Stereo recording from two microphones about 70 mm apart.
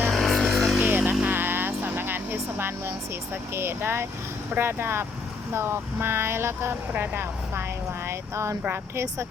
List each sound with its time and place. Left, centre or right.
0.1 s a sound: centre
0.9 s music: right
3.5 s speech: right
8.0 s vehicle: right
8.7 s speech: right